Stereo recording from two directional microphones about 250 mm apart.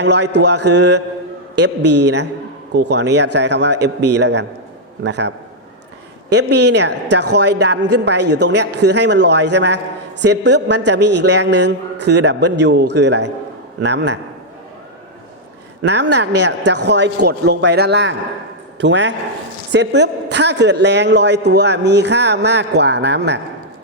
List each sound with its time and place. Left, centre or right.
0.0 s a man's voice: right
6.7 s a man's voice: right
15.8 s a man's voice: right